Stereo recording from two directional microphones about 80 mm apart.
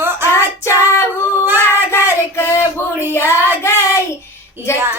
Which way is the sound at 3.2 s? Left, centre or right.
Right.